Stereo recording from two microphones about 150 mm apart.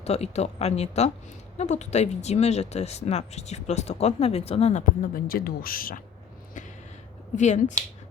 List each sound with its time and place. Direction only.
0.0 s speech: 45° left (ahead or behind)
5.1 s speech: 75° left (ahead or behind)
7.3 s speech: 50° left (ahead or behind)